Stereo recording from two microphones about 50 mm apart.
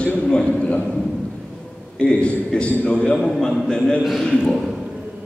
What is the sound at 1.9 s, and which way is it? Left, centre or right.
A man's voice, left.